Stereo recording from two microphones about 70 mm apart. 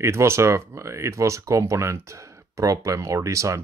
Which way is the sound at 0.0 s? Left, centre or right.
Right.